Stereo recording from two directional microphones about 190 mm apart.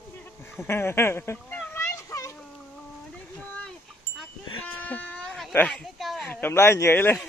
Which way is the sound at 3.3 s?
5° left (ahead or behind).